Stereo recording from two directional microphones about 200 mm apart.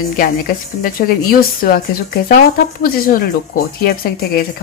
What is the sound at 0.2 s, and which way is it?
A woman's voice, 45° left (ahead or behind).